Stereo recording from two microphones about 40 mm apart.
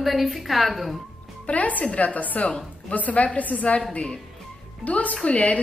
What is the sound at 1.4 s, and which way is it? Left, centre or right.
A woman's voice, left.